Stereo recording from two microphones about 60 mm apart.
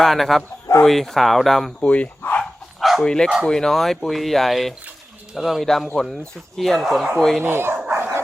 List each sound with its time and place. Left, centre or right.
0.0 s speech: centre
1.8 s speech: left
2.4 s dog: centre
3.0 s speech: centre
7.4 s speech: right
7.9 s dog: right